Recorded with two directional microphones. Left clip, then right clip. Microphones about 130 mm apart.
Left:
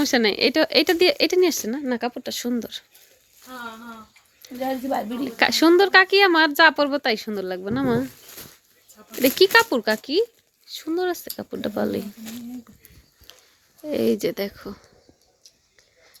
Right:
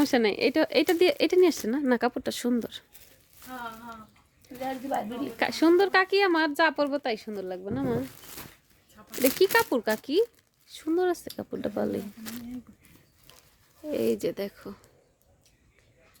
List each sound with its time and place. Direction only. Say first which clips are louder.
0.0 s speech: left 4 dB; 10° right (ahead or behind)
1.6 s speech: even; 30° right (ahead or behind)
2.5 s speech: left 1 dB; 25° right (ahead or behind)
4.4 s a sound: left 7 dB; 5° left (ahead or behind)
4.9 s speech: left 3 dB; 90° left
5.4 s a woman's voice: left 6 dB; 5° left (ahead or behind)
9.2 s a woman's voice: left 7 dB; centre (ahead or behind)
13.8 s a woman's voice: left 5 dB; centre (ahead or behind)